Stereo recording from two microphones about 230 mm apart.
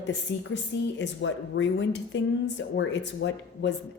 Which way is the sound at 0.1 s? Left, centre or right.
Left.